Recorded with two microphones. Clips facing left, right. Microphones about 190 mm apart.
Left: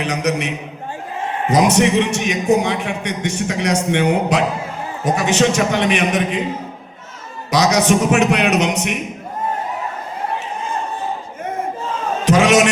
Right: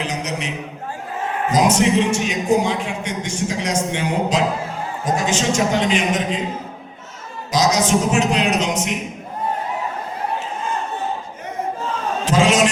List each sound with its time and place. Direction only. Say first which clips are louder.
0.0 s a man's voice: left 5 dB; 65° left (ahead or behind)
1.5 s a man's voice: left 2 dB; 65° left (ahead or behind)
7.5 s a man's voice: left 2 dB; 65° left (ahead or behind)
12.2 s a sound: left 3 dB; 65° left (ahead or behind)